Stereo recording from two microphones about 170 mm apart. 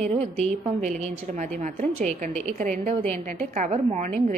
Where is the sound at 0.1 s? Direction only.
35° right (ahead or behind).